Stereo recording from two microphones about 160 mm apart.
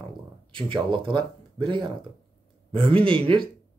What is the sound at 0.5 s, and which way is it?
Speech, 30° right (ahead or behind).